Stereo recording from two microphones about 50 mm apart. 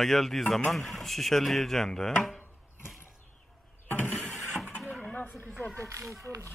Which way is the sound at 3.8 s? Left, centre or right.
Left.